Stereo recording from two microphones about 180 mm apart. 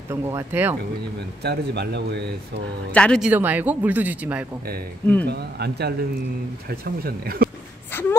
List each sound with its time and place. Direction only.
0.1 s speech: 15° right (ahead or behind)
1.4 s a man's voice: 65° right (ahead or behind)
2.9 s a man's voice: 5° left (ahead or behind)
3.3 s speech: 10° right (ahead or behind)
5.2 s speech: 65° right (ahead or behind)